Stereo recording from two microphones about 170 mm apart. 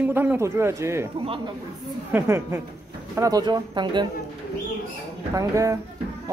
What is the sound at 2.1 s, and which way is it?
Speech, 15° right (ahead or behind).